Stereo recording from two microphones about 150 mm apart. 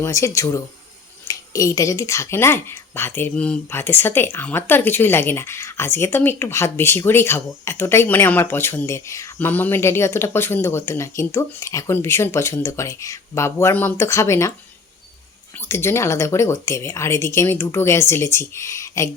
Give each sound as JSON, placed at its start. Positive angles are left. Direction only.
{"t": 0.0, "sound": "speech", "side_deg": 20}
{"t": 15.5, "sound": "speech", "side_deg": 15}